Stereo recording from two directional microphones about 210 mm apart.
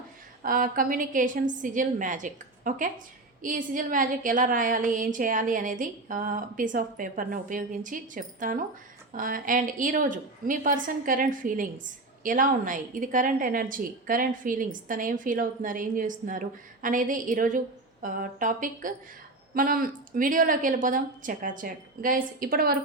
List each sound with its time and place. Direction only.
0.4 s a woman's voice: 40° right (ahead or behind)